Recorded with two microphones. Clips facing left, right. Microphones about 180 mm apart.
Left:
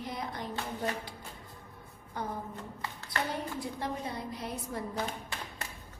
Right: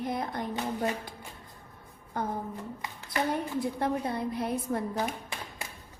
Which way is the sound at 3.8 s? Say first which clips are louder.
Right 6 dB; 60° right (ahead or behind).